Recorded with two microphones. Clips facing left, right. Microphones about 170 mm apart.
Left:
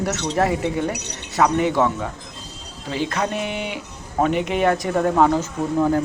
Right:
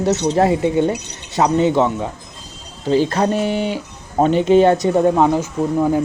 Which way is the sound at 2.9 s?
35° right (ahead or behind).